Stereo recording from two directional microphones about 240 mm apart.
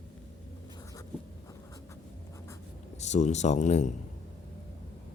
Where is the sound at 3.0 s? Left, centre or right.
Left.